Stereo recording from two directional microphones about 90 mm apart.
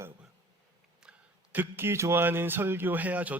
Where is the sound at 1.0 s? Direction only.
10° right (ahead or behind).